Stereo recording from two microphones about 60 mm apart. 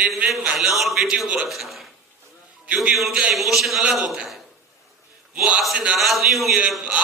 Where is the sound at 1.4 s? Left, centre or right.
Centre.